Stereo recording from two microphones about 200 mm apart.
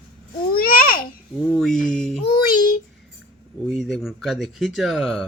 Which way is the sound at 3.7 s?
Centre (ahead or behind).